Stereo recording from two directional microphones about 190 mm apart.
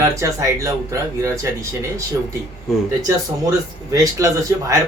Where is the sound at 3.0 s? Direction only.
15° right (ahead or behind).